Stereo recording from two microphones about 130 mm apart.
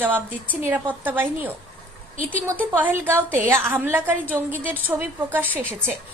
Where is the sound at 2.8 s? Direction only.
15° right (ahead or behind).